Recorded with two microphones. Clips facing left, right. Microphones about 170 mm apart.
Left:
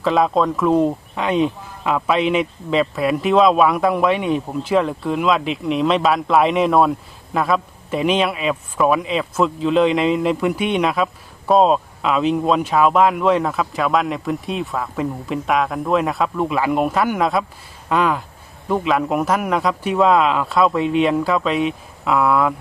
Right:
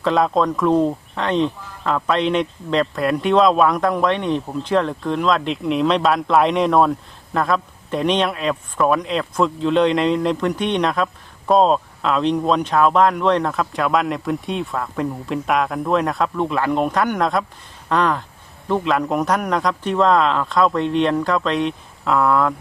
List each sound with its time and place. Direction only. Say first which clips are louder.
0.0 s a man's voice: left 1 dB; centre (ahead or behind)